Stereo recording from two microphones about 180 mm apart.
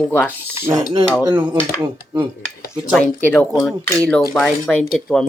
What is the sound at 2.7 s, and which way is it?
Speech, centre (ahead or behind).